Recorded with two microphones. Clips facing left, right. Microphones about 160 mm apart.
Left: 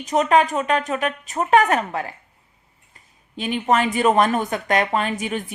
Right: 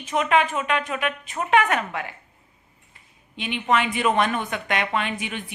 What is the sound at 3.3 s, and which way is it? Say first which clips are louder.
Speech: left 3 dB; 40° left (ahead or behind).